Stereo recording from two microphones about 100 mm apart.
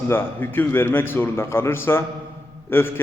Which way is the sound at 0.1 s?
20° left (ahead or behind).